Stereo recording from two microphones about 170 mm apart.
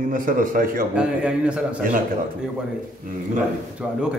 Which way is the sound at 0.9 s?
5° right (ahead or behind).